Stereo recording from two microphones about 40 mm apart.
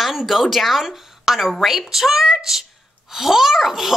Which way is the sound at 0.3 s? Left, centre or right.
Centre.